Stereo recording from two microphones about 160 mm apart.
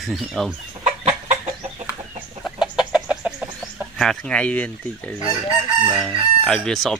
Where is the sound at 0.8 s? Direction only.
40° right (ahead or behind).